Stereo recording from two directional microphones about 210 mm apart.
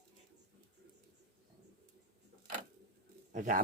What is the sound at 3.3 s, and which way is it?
Speech, 35° right (ahead or behind).